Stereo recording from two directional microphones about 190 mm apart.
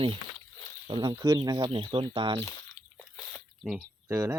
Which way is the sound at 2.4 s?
15° left (ahead or behind).